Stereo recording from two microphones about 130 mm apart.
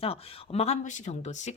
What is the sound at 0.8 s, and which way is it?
Speech, 65° left (ahead or behind).